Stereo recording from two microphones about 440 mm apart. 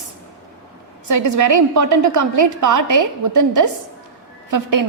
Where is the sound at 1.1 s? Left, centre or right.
Right.